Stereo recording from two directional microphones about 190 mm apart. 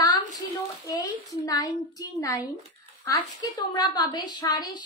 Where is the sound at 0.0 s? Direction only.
20° left (ahead or behind).